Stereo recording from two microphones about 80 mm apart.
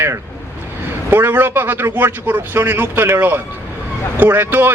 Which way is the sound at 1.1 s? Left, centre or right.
Right.